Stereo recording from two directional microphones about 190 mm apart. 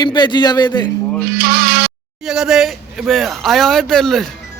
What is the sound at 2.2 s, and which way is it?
A man's voice, 5° right (ahead or behind).